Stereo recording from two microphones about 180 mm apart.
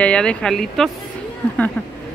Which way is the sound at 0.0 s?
5° left (ahead or behind).